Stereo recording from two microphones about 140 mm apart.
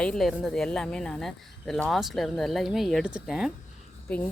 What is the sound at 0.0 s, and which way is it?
Speech, 5° left (ahead or behind).